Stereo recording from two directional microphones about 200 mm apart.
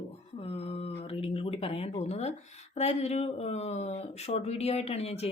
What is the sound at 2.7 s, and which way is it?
Speech, 35° left (ahead or behind).